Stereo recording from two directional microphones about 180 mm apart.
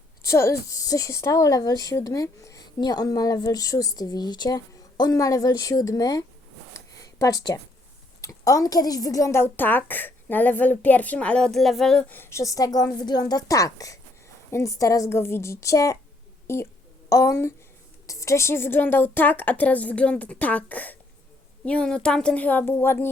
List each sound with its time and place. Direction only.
0.3 s a woman's voice: 15° left (ahead or behind)
6.7 s a sound: 20° left (ahead or behind)
8.2 s a woman's voice: 20° left (ahead or behind)